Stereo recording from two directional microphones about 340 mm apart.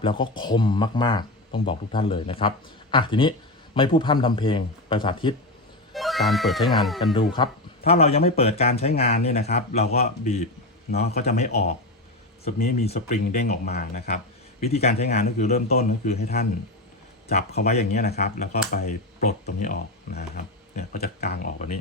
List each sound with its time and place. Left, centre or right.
0.0 s speech: centre
5.9 s speech: centre
7.3 s speech: centre